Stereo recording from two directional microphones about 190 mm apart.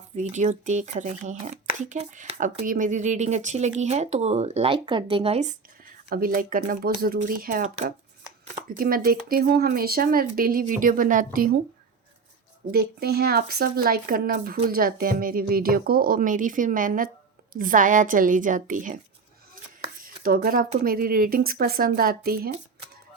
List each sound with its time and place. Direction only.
0.2 s speech: 40° right (ahead or behind)
6.1 s speech: 50° right (ahead or behind)
12.7 s speech: 55° right (ahead or behind)